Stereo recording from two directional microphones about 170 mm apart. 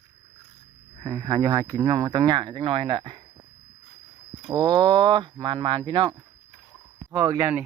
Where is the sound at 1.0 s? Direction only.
20° right (ahead or behind).